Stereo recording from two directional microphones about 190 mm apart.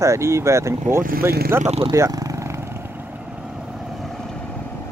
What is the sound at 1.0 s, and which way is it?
Speech, 50° right (ahead or behind).